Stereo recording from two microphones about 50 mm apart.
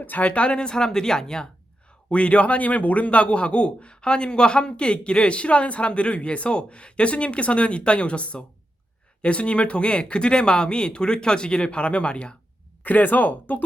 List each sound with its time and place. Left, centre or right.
0.0 s speech: left; by 1.5 s centre
2.0 s a man's voice: left
12.8 s speech: left